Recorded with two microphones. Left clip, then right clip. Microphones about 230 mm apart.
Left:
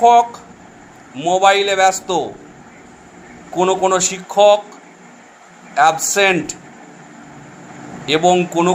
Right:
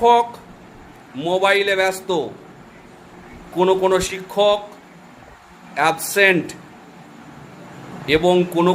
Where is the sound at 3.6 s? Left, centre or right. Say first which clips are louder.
Left 1 dB; right.